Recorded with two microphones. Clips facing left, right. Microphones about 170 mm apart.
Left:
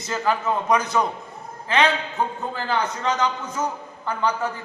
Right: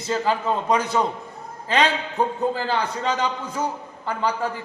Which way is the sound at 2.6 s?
35° right (ahead or behind).